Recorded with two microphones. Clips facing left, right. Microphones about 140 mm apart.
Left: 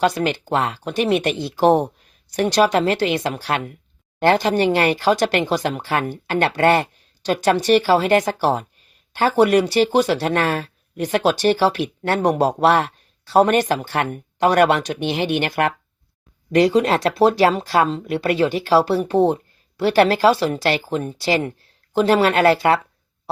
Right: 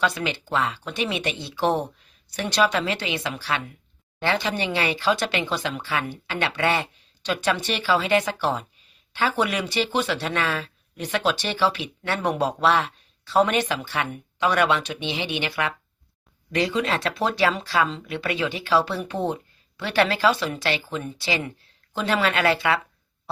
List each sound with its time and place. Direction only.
0.0 s speech: 45° left (ahead or behind)